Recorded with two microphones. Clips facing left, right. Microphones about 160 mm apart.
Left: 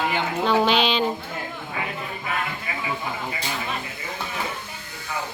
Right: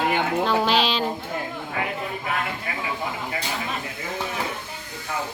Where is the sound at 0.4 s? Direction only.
Centre (ahead or behind).